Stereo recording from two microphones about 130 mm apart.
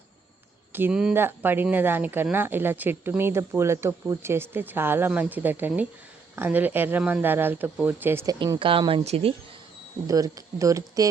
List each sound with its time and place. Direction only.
0.7 s speech: 15° right (ahead or behind)
8.5 s speech: 45° right (ahead or behind)
10.1 s speech: 30° right (ahead or behind)